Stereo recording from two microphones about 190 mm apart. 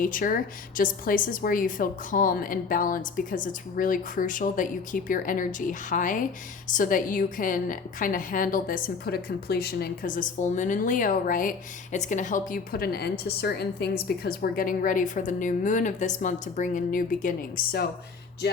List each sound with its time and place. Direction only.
0.0 s a woman's voice: 45° left (ahead or behind)